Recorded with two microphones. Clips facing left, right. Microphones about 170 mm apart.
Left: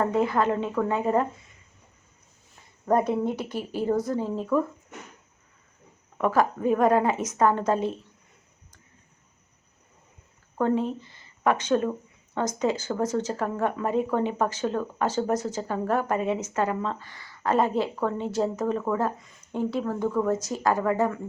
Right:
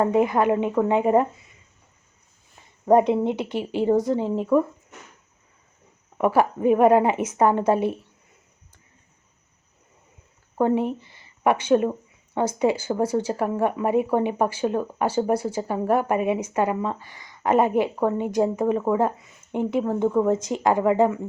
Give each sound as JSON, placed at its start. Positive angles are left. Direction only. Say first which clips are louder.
{"t": 0.0, "sound": "a woman's voice", "louder": "right 4 dB", "side_deg": -15}
{"t": 3.1, "sound": "a woman's voice", "louder": "right 4 dB", "side_deg": -20}
{"t": 6.1, "sound": "a woman's voice", "louder": "right 3 dB", "side_deg": -15}
{"t": 10.6, "sound": "a woman's voice", "louder": "right 3 dB", "side_deg": -15}